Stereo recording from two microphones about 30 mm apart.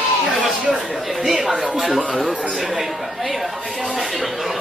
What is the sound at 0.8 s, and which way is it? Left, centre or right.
Speech, centre.